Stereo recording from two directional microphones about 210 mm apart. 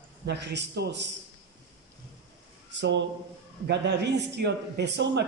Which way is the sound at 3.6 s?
55° right (ahead or behind).